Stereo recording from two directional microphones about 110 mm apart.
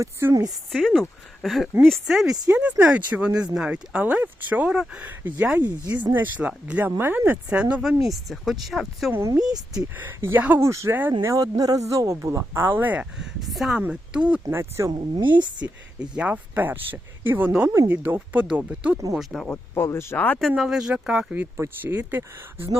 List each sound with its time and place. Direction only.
0.0 s speech: 25° right (ahead or behind)
0.7 s speech: 5° left (ahead or behind)
9.1 s speech: 20° right (ahead or behind)
9.4 s speech: 35° right (ahead or behind)
9.8 s speech: 20° right (ahead or behind)
11.2 s speech: 30° right (ahead or behind); by 13.2 s 15° right (ahead or behind)
13.4 s speech: centre (ahead or behind)
14.5 s speech: 25° right (ahead or behind)
14.9 s speech: 45° right (ahead or behind)
15.6 s speech: 10° right (ahead or behind)
19.1 s speech: centre (ahead or behind)
19.7 s speech: 20° left (ahead or behind)
20.6 s speech: 5° right (ahead or behind)
21.5 s speech: 25° right (ahead or behind)